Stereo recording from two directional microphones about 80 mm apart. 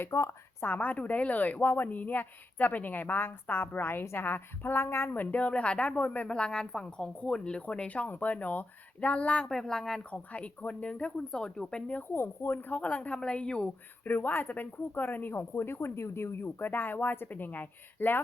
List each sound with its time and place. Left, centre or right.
0.0 s a woman's voice: left
0.6 s speech: left
10.3 s speech: centre
12.1 s speech: left